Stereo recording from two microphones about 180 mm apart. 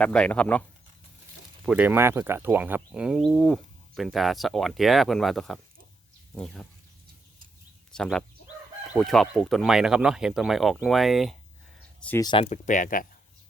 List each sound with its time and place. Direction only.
0.0 s speech: 5° left (ahead or behind)
1.6 s speech: 10° right (ahead or behind)
7.9 s speech: 5° left (ahead or behind)
12.2 s speech: 25° left (ahead or behind)
12.5 s speech: 45° left (ahead or behind)